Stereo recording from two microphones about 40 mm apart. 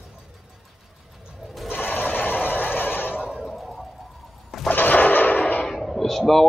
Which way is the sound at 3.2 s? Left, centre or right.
Centre.